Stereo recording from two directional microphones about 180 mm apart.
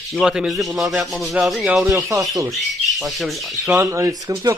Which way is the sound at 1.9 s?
20° right (ahead or behind).